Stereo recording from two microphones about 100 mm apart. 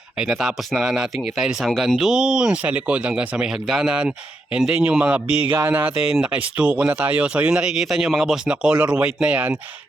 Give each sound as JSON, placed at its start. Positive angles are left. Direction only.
{"t": 0.2, "sound": "speech", "side_deg": -5}
{"t": 6.0, "sound": "speech", "side_deg": -5}